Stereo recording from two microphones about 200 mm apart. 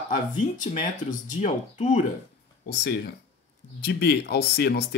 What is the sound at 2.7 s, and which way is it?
Speech, 55° left (ahead or behind).